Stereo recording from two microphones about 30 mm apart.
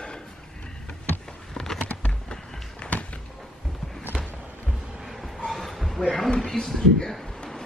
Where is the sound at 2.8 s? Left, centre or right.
Left.